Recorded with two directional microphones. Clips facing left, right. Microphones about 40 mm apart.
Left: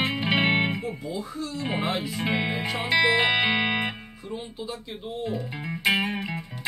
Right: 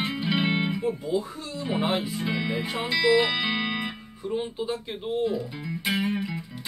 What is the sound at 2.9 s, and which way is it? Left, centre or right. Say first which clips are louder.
Speech: left 1 dB; left.